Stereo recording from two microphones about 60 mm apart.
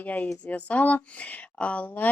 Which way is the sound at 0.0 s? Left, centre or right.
Left.